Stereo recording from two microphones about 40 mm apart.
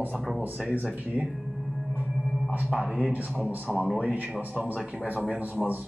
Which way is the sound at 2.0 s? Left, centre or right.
Right.